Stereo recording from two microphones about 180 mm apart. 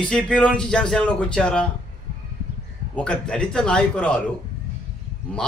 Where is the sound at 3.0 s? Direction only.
5° left (ahead or behind).